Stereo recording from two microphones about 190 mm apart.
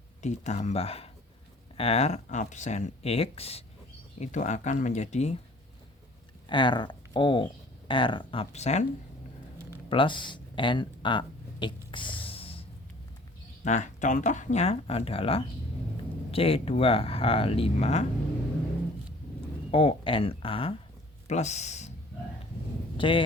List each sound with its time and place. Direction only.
0.2 s speech: 35° left (ahead or behind)
6.5 s speech: 25° left (ahead or behind)
9.6 s a sound: 25° left (ahead or behind)
13.7 s speech: 40° left (ahead or behind)
19.7 s speech: 30° left (ahead or behind)
23.0 s speech: 25° left (ahead or behind)